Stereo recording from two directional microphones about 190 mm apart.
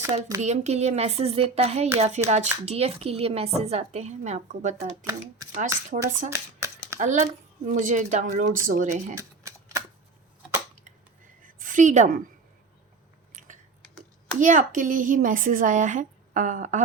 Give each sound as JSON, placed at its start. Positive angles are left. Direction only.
{"t": 0.0, "sound": "speech", "side_deg": -15}
{"t": 0.4, "sound": "speech", "side_deg": -35}
{"t": 5.0, "sound": "speech", "side_deg": -15}
{"t": 6.1, "sound": "speech", "side_deg": -40}
{"t": 9.1, "sound": "typewriter", "side_deg": -15}
{"t": 11.4, "sound": "a sound", "side_deg": -45}
{"t": 14.3, "sound": "speech", "side_deg": -45}